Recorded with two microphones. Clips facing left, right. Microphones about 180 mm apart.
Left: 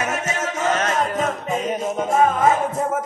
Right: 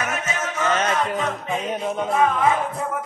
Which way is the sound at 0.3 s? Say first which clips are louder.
Even; 40° left (ahead or behind).